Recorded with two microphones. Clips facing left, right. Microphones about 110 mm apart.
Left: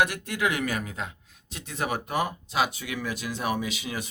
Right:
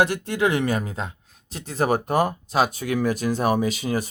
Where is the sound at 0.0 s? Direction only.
30° right (ahead or behind).